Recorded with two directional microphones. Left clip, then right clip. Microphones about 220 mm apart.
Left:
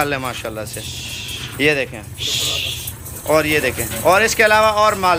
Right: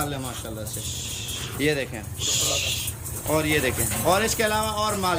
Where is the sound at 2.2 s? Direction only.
50° right (ahead or behind).